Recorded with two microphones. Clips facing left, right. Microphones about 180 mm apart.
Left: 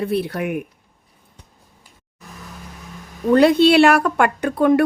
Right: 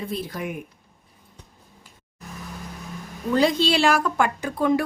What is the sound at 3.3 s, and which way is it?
A woman's voice, 60° left (ahead or behind).